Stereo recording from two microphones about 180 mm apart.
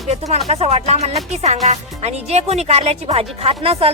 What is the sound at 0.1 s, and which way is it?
A woman's voice, 35° right (ahead or behind).